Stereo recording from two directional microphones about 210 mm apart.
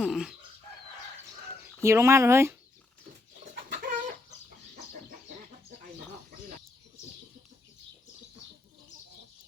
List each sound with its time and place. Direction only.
0.0 s chicken: centre (ahead or behind)
1.6 s speech: 15° right (ahead or behind)
3.5 s bird: 40° right (ahead or behind)